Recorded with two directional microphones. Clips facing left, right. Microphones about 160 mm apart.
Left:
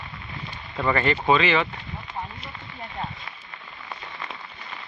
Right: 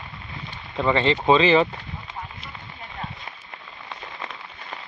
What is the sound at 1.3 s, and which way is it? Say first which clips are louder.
Speech: right 4 dB; 30° right (ahead or behind).